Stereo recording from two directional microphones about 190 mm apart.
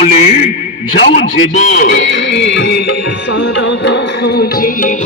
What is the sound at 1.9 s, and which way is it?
Music, 70° left (ahead or behind).